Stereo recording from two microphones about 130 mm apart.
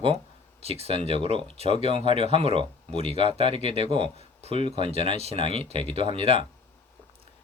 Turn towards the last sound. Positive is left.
turn(degrees=-50)  # may be behind; listen again after turning